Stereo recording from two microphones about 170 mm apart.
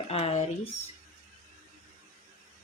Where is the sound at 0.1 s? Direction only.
40° left (ahead or behind).